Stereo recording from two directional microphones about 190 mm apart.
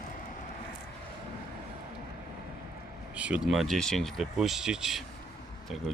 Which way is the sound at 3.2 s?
5° right (ahead or behind).